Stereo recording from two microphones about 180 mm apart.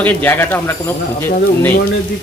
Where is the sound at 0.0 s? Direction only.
10° left (ahead or behind).